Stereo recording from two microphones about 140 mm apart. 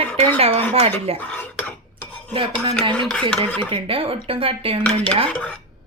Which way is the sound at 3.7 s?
40° right (ahead or behind).